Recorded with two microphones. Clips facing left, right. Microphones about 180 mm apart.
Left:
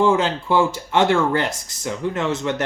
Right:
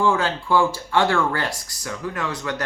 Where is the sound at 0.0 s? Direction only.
20° left (ahead or behind).